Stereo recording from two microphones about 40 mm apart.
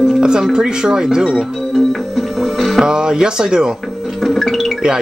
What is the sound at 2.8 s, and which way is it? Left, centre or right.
Speech, centre.